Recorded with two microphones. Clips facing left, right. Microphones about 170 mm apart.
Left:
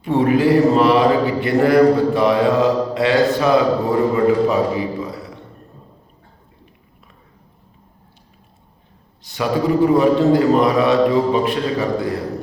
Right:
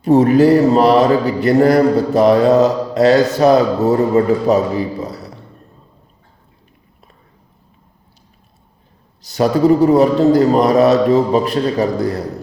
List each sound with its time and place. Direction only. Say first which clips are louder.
0.0 s speech: right 5 dB; 40° right (ahead or behind)
9.2 s speech: right 6 dB; 40° right (ahead or behind)